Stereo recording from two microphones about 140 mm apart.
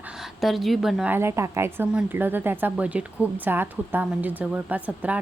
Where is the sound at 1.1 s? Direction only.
15° right (ahead or behind).